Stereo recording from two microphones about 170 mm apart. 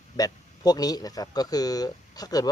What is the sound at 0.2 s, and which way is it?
Speech, 20° left (ahead or behind).